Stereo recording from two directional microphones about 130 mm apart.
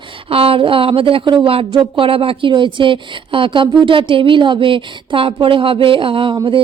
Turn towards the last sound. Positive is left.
turn(degrees=-40)  # may be behind; listen again after turning